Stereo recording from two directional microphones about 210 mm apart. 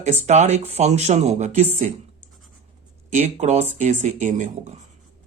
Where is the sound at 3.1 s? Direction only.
35° right (ahead or behind).